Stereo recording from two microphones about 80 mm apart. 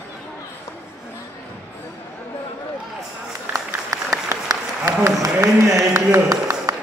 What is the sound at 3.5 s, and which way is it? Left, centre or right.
Applause, right.